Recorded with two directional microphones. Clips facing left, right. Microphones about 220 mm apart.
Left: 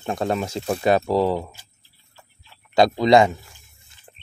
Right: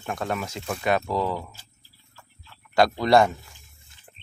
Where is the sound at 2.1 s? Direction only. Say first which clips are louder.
Even; 20° left (ahead or behind).